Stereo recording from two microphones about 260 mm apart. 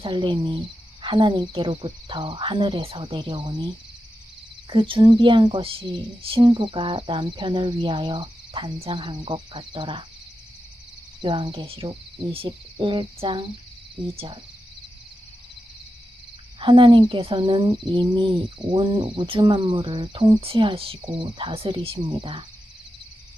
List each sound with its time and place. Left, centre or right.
0.0 s speech: centre
4.7 s speech: centre
11.2 s speech: centre
16.6 s speech: centre